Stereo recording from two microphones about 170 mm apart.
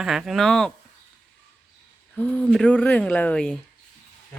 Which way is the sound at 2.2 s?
5° left (ahead or behind).